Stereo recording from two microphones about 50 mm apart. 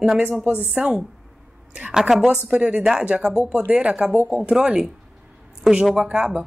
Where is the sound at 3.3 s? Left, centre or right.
Right.